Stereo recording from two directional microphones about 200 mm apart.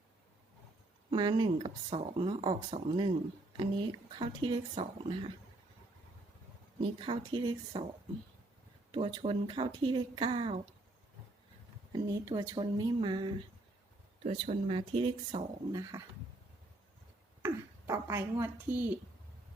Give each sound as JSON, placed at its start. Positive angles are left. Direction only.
{"t": 1.1, "sound": "speech", "side_deg": -25}
{"t": 7.0, "sound": "speech", "side_deg": -25}
{"t": 8.9, "sound": "speech", "side_deg": -25}
{"t": 11.9, "sound": "speech", "side_deg": -20}
{"t": 15.8, "sound": "a sound", "side_deg": -15}
{"t": 17.4, "sound": "a woman's voice", "side_deg": -15}